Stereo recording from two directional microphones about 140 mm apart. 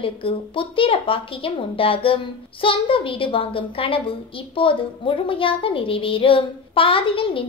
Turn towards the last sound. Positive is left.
turn(degrees=40)  # may be behind; listen again after turning